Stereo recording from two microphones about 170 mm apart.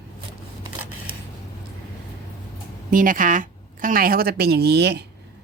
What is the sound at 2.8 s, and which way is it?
A woman's voice, 55° right (ahead or behind).